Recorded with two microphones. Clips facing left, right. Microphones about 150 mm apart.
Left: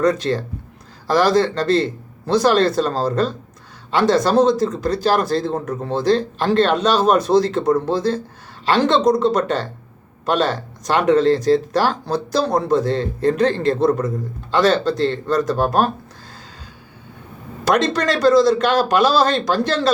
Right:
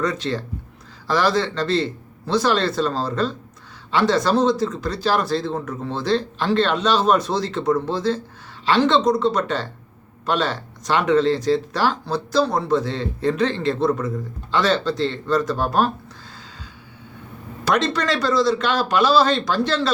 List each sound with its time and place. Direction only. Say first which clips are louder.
0.0 s speech: left 6 dB; 40° left (ahead or behind)
9.0 s speech: left 3 dB; 15° left (ahead or behind)
9.3 s speech: left 4 dB; 40° left (ahead or behind)
17.7 s speech: left 3 dB; 45° left (ahead or behind)